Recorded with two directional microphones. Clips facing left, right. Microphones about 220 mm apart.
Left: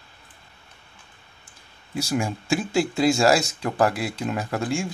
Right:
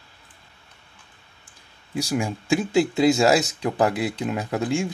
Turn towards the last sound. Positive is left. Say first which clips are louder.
# right 2 dB
turn(degrees=-20)  # may be behind; listen again after turning